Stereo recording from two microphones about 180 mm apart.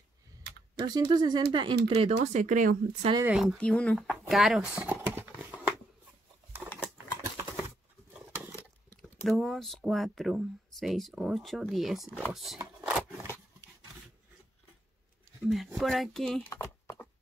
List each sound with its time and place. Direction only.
0.7 s speech: 25° right (ahead or behind)
2.3 s speech: 45° right (ahead or behind)
3.3 s speech: centre (ahead or behind)
6.7 s a sound: 10° left (ahead or behind)
9.2 s speech: centre (ahead or behind)
12.8 s a sound: 10° right (ahead or behind)
15.4 s speech: centre (ahead or behind)
16.4 s typing: 15° left (ahead or behind)